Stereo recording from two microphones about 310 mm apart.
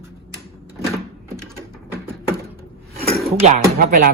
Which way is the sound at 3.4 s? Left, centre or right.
Right.